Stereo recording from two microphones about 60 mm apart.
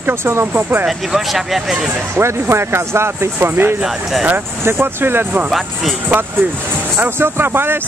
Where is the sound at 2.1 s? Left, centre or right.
Right.